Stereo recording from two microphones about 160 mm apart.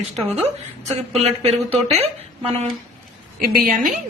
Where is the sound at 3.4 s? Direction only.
70° right (ahead or behind).